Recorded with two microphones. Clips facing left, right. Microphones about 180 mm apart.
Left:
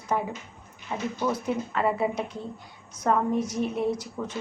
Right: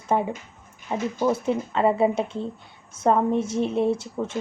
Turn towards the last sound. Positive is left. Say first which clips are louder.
# right 5 dB
turn(degrees=-25)  # may be behind; listen again after turning